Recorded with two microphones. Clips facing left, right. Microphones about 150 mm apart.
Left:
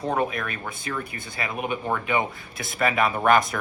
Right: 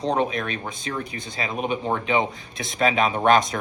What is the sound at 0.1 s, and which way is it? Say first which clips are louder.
Speech: right 2 dB; 25° right (ahead or behind).